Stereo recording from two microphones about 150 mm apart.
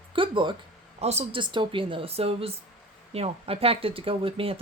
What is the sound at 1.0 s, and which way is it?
Speech, 45° right (ahead or behind).